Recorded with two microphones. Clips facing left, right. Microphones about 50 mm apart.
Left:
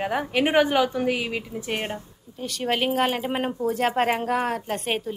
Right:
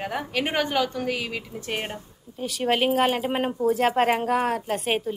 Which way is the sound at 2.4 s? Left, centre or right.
Centre.